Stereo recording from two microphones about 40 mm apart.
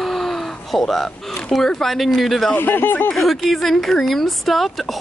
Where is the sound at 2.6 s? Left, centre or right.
Left.